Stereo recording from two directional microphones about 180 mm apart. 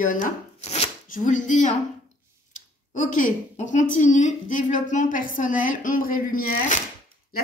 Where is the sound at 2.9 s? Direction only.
45° left (ahead or behind).